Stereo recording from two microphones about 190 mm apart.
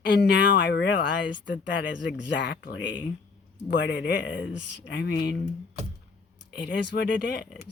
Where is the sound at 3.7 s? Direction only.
70° left (ahead or behind).